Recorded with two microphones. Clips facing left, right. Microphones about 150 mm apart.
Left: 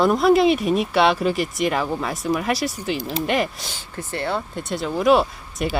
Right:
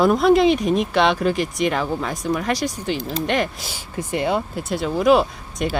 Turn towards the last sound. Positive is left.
turn(degrees=0)  # may be behind; listen again after turning